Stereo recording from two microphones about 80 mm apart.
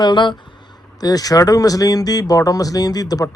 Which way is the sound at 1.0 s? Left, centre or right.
Left.